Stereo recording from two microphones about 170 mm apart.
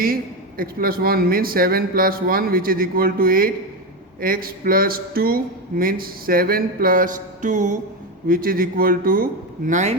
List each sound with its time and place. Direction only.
0.0 s speech: 60° right (ahead or behind)
8.3 s speech: 60° right (ahead or behind)